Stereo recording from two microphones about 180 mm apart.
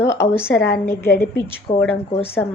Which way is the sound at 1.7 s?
30° left (ahead or behind).